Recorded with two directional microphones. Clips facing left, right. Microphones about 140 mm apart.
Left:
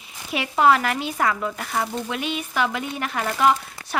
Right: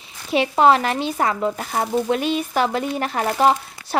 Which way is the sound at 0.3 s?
25° right (ahead or behind).